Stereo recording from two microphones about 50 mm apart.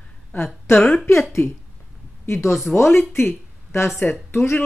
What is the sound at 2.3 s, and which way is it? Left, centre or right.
Speech, left.